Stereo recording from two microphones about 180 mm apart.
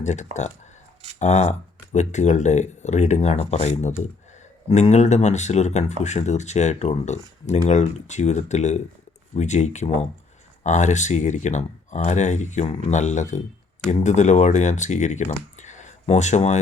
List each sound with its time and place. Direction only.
0.0 s speech: 40° left (ahead or behind)